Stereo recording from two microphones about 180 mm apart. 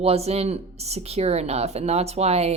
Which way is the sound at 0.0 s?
35° right (ahead or behind).